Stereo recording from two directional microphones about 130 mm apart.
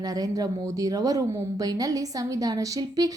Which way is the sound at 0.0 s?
30° right (ahead or behind).